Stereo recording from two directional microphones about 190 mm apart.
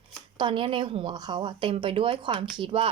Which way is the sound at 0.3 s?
25° right (ahead or behind).